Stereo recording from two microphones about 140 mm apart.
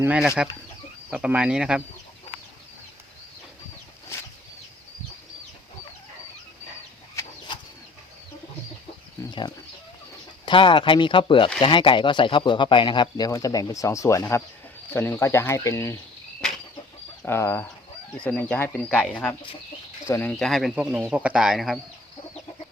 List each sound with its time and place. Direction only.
0.2 s speech: 5° right (ahead or behind)
7.2 s a sound: 20° left (ahead or behind)
10.4 s speech: 35° left (ahead or behind); by 16.0 s 20° left (ahead or behind)
17.2 s speech: 20° left (ahead or behind)
20.1 s speech: 20° left (ahead or behind)
20.4 s speech: centre (ahead or behind)